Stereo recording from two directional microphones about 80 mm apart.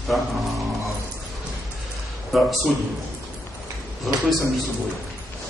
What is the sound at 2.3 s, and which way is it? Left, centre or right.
Speech, centre.